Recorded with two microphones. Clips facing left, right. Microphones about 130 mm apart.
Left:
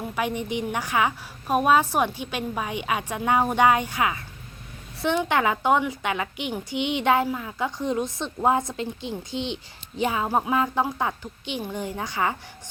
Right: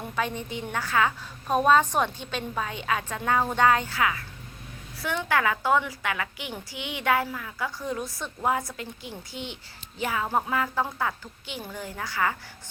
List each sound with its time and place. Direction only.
0.2 s a woman's voice: 15° left (ahead or behind)